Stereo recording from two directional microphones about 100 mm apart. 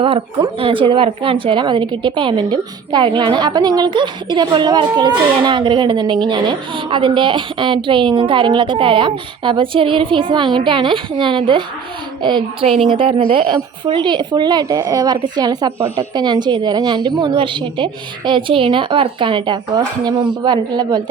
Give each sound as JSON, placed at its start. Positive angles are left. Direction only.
{"t": 0.0, "sound": "speech", "side_deg": -60}
{"t": 13.0, "sound": "speech", "side_deg": -65}